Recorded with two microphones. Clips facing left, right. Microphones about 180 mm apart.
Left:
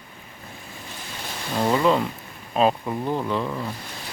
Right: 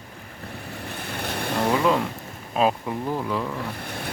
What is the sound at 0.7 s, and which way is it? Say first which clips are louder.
Vehicle: right 6 dB; 65° right (ahead or behind).